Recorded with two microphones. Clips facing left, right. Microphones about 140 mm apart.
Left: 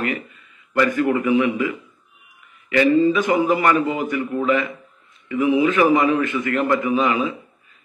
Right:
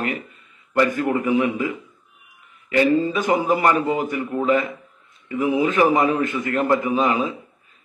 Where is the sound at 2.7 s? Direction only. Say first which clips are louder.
Left 2 dB; 35° right (ahead or behind).